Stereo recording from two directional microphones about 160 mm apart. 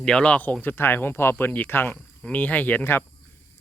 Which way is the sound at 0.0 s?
5° left (ahead or behind).